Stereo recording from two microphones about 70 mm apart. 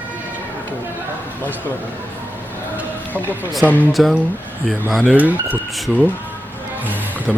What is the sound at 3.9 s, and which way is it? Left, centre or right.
Speech, centre.